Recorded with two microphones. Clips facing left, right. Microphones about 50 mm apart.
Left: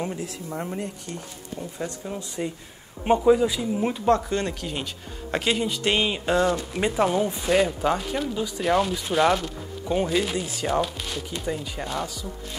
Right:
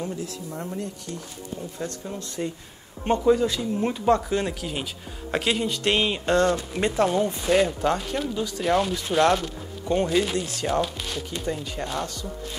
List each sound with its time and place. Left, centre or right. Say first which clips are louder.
0.0 s speech: left 1 dB; left
2.0 s speech: even; centre